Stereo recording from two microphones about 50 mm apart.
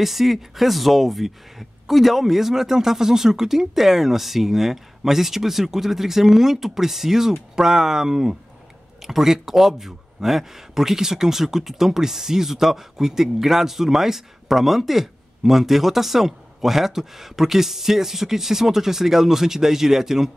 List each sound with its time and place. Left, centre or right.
0.0 s speech: centre